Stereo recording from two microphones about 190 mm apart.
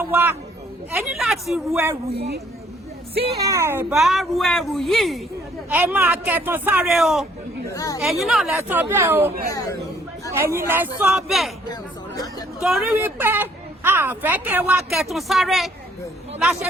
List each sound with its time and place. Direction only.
0.0 s a woman's voice: 10° right (ahead or behind)
1.7 s a woman's voice: 15° right (ahead or behind)
2.1 s a woman's voice: 60° right (ahead or behind)
3.4 s a woman's voice: 15° right (ahead or behind)
3.9 s a woman's voice: centre (ahead or behind)
7.7 s speech: 15° left (ahead or behind)
8.0 s speech: centre (ahead or behind)
8.9 s a woman's voice: 10° right (ahead or behind)
9.3 s speech: 50° right (ahead or behind)
10.3 s a woman's voice: 15° right (ahead or behind)
11.7 s a sound: 20° left (ahead or behind)
12.6 s a woman's voice: 5° right (ahead or behind)